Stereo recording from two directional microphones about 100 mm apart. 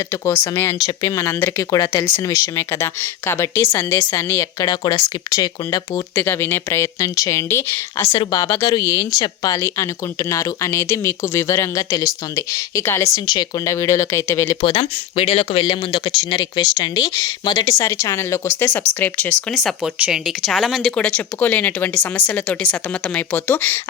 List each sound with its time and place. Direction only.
0.1 s speech: 25° left (ahead or behind)
0.9 s speech: 35° left (ahead or behind)
4.6 s speech: 45° left (ahead or behind)
6.1 s speech: 20° left (ahead or behind)
8.0 s speech: 70° left (ahead or behind)
8.3 s speech: 35° left (ahead or behind)
9.6 s speech: 30° left (ahead or behind)
13.1 s speech: 45° left (ahead or behind)
13.7 s speech: 30° left (ahead or behind)
14.8 s speech: 80° left; by 16.5 s 60° left (ahead or behind)
16.6 s speech: 40° left (ahead or behind); by 19.5 s 15° left (ahead or behind)
19.5 s speech: 5° right (ahead or behind); by 23.8 s 20° left (ahead or behind)